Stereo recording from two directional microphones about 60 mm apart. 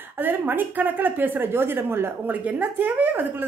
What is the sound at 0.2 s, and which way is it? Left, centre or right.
A woman's voice, right.